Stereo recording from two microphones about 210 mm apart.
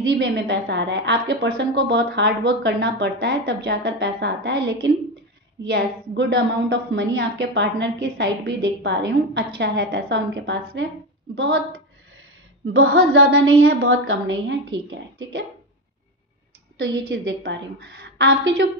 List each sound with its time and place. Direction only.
0.1 s a woman's voice: 55° right (ahead or behind)
12.7 s a sound: 85° right
13.6 s a woman's voice: 50° right (ahead or behind)
13.8 s a woman's voice: 65° right (ahead or behind)
16.7 s a woman's voice: 60° right (ahead or behind)
17.0 s a woman's voice: 50° right (ahead or behind)